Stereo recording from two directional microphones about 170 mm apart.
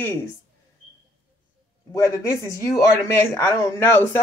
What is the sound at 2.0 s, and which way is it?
Speech, 20° left (ahead or behind).